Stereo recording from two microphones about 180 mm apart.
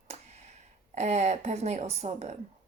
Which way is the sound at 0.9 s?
40° right (ahead or behind).